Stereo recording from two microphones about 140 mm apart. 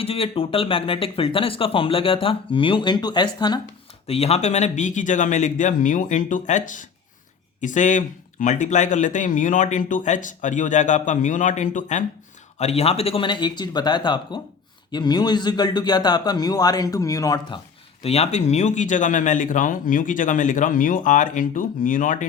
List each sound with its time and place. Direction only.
0.0 s speech: 45° left (ahead or behind)
4.0 s speech: 45° left (ahead or behind); by 12.0 s 60° left (ahead or behind)
12.5 s speech: 50° left (ahead or behind); by 17.6 s 25° left (ahead or behind)
18.0 s speech: 50° left (ahead or behind); by 22.3 s 70° left (ahead or behind)